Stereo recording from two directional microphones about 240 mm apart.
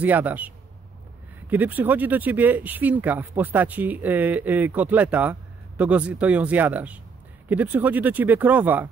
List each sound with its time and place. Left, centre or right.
0.0 s speech: centre
1.5 s speech: centre